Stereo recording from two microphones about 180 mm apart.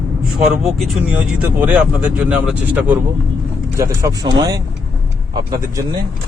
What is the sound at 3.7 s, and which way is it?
Speech, 15° right (ahead or behind).